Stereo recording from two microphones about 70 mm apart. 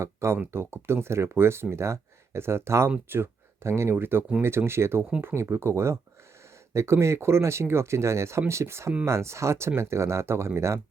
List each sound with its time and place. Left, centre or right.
0.0 s speech: right